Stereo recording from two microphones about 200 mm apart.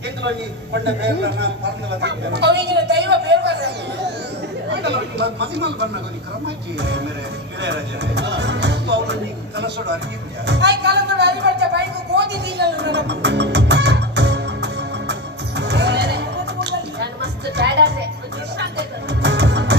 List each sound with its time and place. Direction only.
0.2 s speech: 60° right (ahead or behind)
6.7 s speech: 60° right (ahead or behind)
10.4 s a sound: 60° right (ahead or behind)
15.5 s music: 60° right (ahead or behind)